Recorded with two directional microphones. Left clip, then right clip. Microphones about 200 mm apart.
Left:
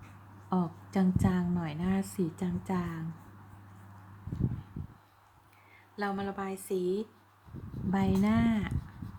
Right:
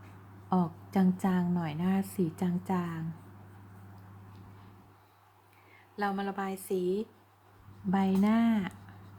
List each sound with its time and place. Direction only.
0.5 s a woman's voice: 10° right (ahead or behind)
6.0 s a woman's voice: 10° right (ahead or behind)